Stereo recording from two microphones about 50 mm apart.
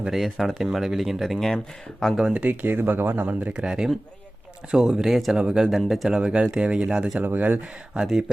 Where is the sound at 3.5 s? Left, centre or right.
Centre.